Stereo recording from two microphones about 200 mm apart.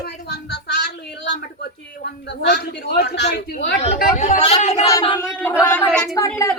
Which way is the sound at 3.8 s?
35° left (ahead or behind).